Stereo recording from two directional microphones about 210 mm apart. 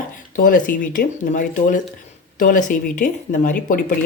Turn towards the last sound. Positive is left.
turn(degrees=40)  # may be behind; listen again after turning